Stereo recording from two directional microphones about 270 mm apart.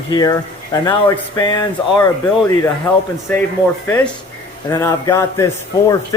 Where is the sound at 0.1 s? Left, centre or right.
Centre.